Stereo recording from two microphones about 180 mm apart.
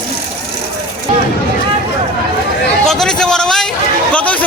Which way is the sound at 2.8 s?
Centre (ahead or behind).